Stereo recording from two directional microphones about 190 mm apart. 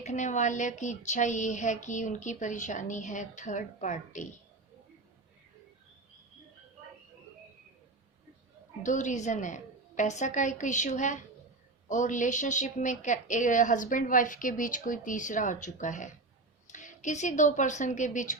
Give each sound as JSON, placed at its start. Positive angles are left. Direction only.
{"t": 0.0, "sound": "a woman's voice", "side_deg": 40}
{"t": 8.8, "sound": "a woman's voice", "side_deg": 40}